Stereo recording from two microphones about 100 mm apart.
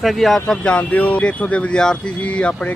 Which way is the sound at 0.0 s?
Centre (ahead or behind).